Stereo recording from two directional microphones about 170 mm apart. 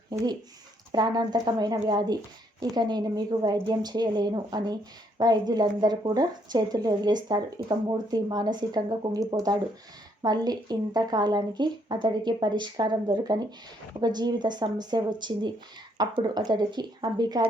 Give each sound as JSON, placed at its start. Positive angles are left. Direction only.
{"t": 0.9, "sound": "a woman's voice", "side_deg": -25}